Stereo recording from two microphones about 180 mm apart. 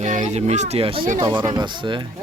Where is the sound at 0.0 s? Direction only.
40° right (ahead or behind).